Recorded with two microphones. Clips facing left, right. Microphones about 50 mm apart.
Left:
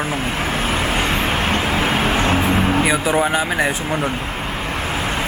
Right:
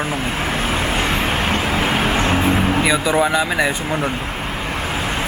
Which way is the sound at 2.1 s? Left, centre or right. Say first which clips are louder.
Even; centre.